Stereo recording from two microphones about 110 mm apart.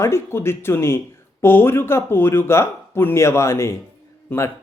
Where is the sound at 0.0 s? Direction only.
20° left (ahead or behind).